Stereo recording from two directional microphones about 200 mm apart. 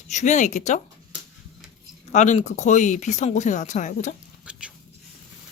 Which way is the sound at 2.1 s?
35° left (ahead or behind).